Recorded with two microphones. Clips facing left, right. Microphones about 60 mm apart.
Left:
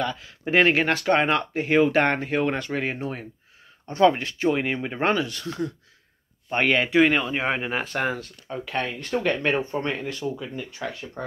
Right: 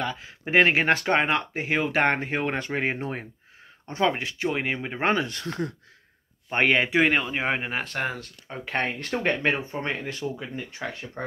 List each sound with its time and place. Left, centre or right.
0.5 s speech: centre
0.8 s speech: right
1.2 s speech: centre
2.0 s speech: centre
4.0 s speech: centre
5.1 s speech: right
6.5 s speech: centre
7.8 s speech: centre
8.7 s speech: right
9.4 s speech: centre
10.9 s speech: right